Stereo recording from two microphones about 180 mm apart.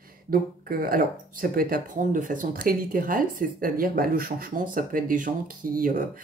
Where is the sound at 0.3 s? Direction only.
55° right (ahead or behind).